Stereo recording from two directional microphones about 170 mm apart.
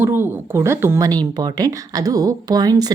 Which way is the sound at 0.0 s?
15° right (ahead or behind).